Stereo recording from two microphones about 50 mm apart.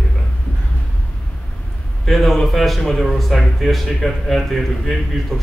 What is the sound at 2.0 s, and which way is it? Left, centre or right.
Speech, centre.